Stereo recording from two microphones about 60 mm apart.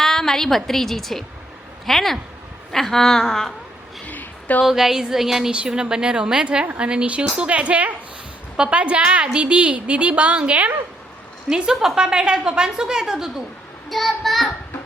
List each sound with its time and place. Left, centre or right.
0.0 s a woman's voice: centre
4.0 s a sound: left
4.6 s a woman's voice: centre; by 10.8 s right
11.4 s a woman's voice: centre
13.9 s a child's voice: centre